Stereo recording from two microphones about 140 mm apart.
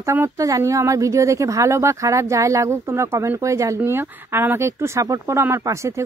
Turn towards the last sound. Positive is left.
turn(degrees=-20)  # may be behind; listen again after turning